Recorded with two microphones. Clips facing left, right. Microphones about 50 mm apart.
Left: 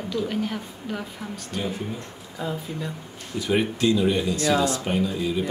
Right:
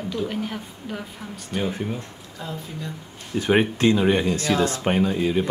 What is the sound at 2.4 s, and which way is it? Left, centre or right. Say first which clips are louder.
Speech: left 3 dB; centre.